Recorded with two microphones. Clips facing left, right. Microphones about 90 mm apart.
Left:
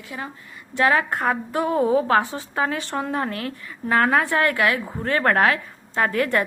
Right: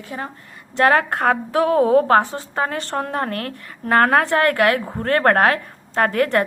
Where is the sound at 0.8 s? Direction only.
55° right (ahead or behind).